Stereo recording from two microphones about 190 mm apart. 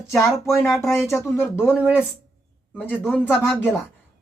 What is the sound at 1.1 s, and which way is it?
A man's voice, 15° left (ahead or behind).